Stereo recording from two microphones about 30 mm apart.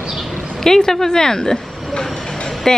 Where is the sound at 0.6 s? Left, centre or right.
Centre.